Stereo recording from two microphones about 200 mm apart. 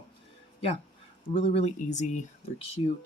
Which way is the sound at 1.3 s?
30° left (ahead or behind).